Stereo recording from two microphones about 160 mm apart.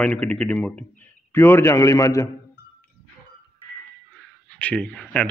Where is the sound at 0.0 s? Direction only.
5° left (ahead or behind).